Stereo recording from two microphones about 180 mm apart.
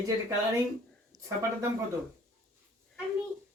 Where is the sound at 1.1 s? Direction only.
45° right (ahead or behind).